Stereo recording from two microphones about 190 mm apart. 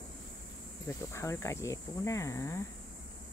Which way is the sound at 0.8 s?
15° left (ahead or behind).